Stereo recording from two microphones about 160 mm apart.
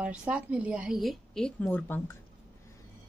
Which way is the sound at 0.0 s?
10° right (ahead or behind).